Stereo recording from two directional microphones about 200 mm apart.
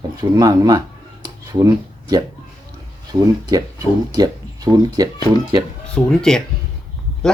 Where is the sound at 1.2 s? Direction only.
15° right (ahead or behind).